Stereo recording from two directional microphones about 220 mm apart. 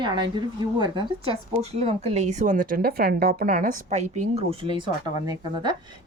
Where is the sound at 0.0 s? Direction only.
20° right (ahead or behind).